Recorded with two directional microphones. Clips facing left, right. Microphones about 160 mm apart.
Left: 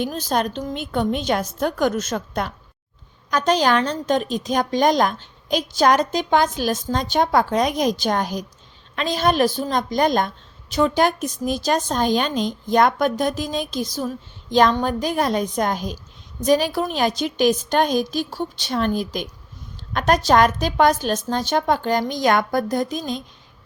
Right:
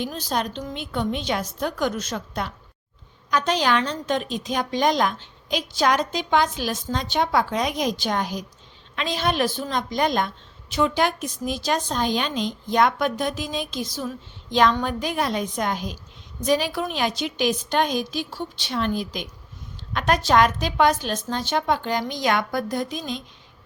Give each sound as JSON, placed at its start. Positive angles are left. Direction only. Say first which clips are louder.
{"t": 0.0, "sound": "a woman's voice", "louder": "left 4 dB", "side_deg": 45}